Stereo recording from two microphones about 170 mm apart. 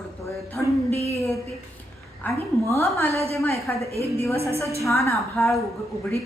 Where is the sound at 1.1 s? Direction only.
15° left (ahead or behind).